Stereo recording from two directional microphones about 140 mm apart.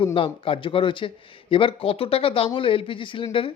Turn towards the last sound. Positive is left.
turn(degrees=40)  # may be behind; listen again after turning